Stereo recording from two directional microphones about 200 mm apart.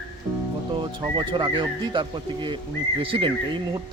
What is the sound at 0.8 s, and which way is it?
Speech, 20° right (ahead or behind).